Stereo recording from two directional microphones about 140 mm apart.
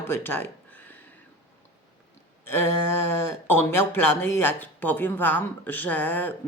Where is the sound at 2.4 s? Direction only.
15° left (ahead or behind).